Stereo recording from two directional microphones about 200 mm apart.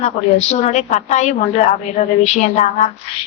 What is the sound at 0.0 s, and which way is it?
A woman's voice, 35° left (ahead or behind).